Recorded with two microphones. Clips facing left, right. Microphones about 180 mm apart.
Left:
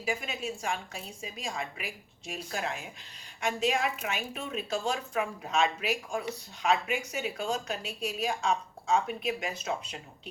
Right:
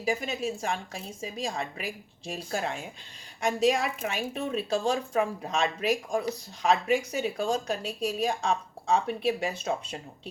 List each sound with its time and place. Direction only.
0.0 s a woman's voice: 40° right (ahead or behind)